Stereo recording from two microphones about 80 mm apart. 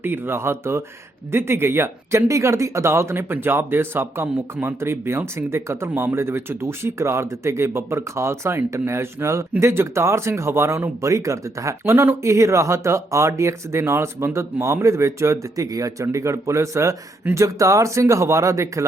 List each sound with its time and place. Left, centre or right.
0.0 s speech: right
11.0 s speech: right